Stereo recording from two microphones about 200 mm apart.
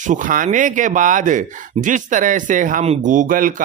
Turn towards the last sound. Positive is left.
turn(degrees=-40)  # may be behind; listen again after turning